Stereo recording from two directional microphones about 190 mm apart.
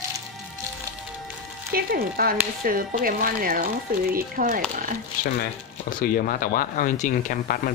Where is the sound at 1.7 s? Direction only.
50° right (ahead or behind).